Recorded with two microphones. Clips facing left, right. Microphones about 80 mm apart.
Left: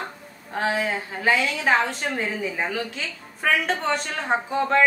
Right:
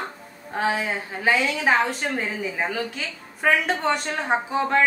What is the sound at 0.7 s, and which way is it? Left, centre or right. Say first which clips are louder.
A woman's voice: left 1 dB; centre.